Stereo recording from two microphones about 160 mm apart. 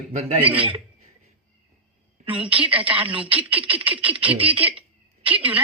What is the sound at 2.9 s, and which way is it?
Speech, 35° right (ahead or behind).